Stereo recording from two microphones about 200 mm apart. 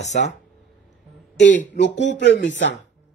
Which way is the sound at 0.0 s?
35° left (ahead or behind).